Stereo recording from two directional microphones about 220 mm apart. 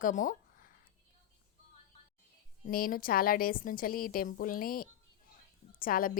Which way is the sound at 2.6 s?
40° left (ahead or behind).